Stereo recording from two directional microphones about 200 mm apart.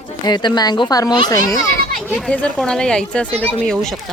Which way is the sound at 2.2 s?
5° left (ahead or behind).